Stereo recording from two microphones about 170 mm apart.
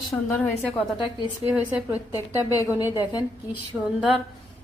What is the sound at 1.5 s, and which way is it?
Speech, 10° right (ahead or behind).